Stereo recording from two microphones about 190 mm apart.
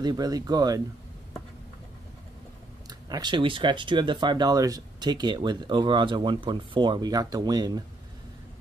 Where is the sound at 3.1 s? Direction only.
25° right (ahead or behind).